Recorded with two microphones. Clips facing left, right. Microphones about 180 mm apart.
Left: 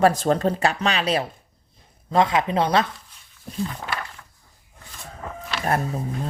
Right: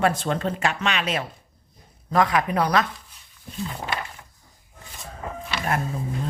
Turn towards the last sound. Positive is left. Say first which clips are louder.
# left 2 dB
turn(degrees=35)  # may be behind; listen again after turning